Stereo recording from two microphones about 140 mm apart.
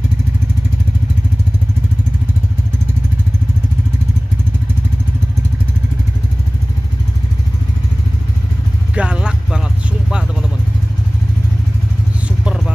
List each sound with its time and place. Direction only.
8.9 s vehicle: 10° right (ahead or behind)